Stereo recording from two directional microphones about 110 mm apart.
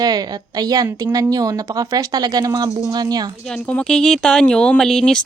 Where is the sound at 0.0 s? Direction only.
35° right (ahead or behind).